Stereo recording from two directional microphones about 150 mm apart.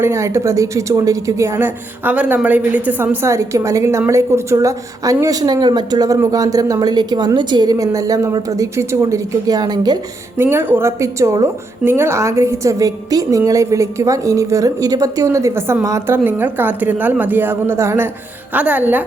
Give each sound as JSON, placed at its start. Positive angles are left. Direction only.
{"t": 0.0, "sound": "a woman's voice", "side_deg": -20}
{"t": 10.3, "sound": "a woman's voice", "side_deg": -15}